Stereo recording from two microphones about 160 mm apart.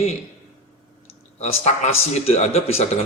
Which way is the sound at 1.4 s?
45° left (ahead or behind).